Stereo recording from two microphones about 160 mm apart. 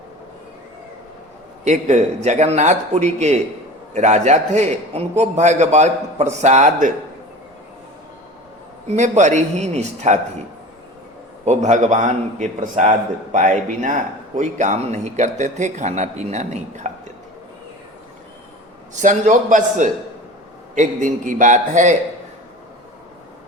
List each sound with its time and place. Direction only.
1.6 s a man's voice: 45° right (ahead or behind)
8.9 s a man's voice: 45° right (ahead or behind)
11.4 s a man's voice: 50° right (ahead or behind)
19.0 s a man's voice: 50° right (ahead or behind)